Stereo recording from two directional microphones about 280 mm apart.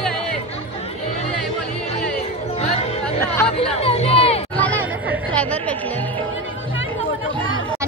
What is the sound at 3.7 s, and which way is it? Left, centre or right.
Music, left.